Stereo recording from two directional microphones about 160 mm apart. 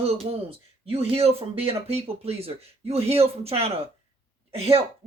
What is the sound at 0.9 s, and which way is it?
Speech, 35° right (ahead or behind).